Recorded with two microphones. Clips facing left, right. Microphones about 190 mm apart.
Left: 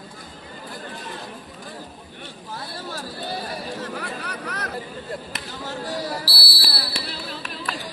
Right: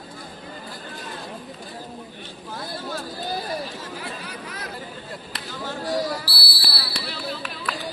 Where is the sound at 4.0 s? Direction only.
65° left (ahead or behind).